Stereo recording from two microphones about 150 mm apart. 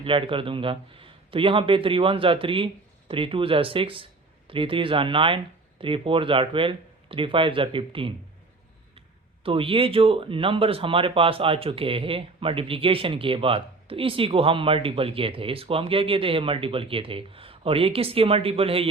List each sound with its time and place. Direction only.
0.0 s speech: 35° right (ahead or behind)